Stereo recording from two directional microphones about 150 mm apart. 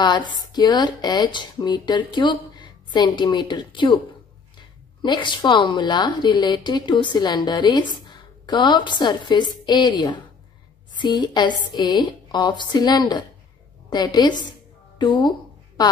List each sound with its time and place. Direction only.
0.0 s a woman's voice: 30° left (ahead or behind)
5.0 s a woman's voice: 30° left (ahead or behind)